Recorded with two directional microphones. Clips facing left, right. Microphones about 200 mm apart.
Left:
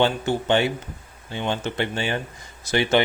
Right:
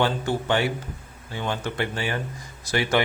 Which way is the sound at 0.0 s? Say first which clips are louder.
Left 2 dB; 25° left (ahead or behind).